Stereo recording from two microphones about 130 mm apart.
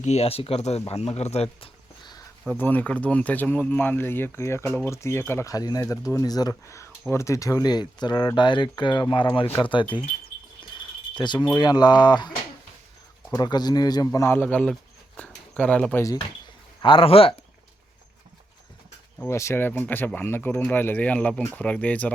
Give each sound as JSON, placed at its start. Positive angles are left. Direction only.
{"t": 0.0, "sound": "speech", "side_deg": 55}
{"t": 2.5, "sound": "speech", "side_deg": 15}
{"t": 11.1, "sound": "speech", "side_deg": 35}
{"t": 13.3, "sound": "speech", "side_deg": 30}
{"t": 16.8, "sound": "speech", "side_deg": 45}
{"t": 19.2, "sound": "speech", "side_deg": 20}